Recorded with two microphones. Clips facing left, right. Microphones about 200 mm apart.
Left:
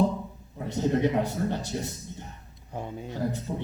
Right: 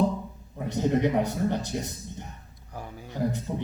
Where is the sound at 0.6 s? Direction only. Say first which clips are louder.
Right 1 dB; 15° right (ahead or behind).